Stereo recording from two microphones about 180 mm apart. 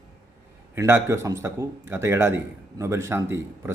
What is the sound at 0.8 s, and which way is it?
A man's voice, 15° right (ahead or behind).